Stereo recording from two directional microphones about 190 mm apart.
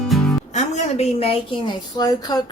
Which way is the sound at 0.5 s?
35° left (ahead or behind).